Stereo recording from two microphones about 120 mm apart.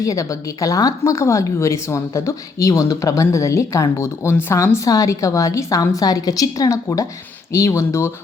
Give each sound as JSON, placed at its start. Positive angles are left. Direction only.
{"t": 0.0, "sound": "speech", "side_deg": 25}